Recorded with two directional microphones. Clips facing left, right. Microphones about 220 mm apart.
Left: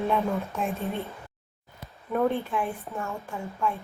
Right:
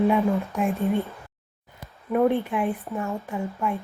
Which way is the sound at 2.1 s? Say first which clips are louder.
Right 4 dB; 15° right (ahead or behind).